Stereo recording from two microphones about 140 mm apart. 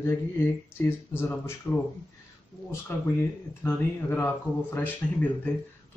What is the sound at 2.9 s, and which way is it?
Speech, 15° left (ahead or behind).